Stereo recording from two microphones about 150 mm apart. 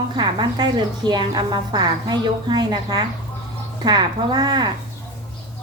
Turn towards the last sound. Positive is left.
turn(degrees=-30)  # may be behind; listen again after turning